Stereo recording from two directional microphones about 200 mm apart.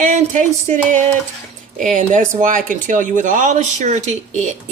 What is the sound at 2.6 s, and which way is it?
Speech, 40° right (ahead or behind).